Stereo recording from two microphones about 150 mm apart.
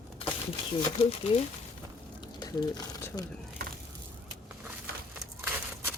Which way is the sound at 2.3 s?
25° left (ahead or behind).